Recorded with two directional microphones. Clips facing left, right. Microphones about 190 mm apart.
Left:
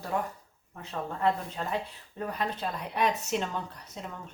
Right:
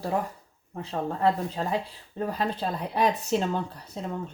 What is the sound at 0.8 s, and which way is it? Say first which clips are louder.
Speech: right 5 dB; 35° right (ahead or behind).